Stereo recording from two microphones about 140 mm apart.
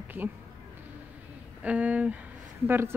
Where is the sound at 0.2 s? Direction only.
20° right (ahead or behind).